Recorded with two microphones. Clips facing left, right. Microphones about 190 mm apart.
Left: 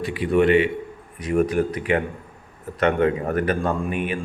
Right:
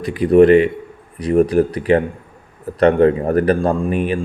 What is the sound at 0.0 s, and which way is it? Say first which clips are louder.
A man's voice: right 8 dB; 40° right (ahead or behind).